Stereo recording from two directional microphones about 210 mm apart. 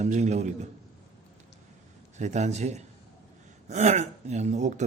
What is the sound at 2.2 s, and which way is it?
A man's voice, 35° right (ahead or behind).